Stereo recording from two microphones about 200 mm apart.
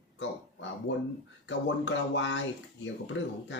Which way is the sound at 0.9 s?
65° left (ahead or behind).